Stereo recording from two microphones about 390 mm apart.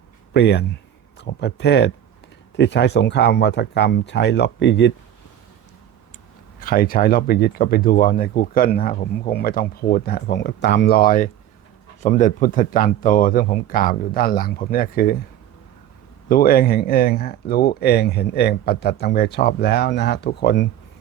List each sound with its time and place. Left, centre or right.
0.3 s speech: left
6.6 s speech: left
16.3 s speech: left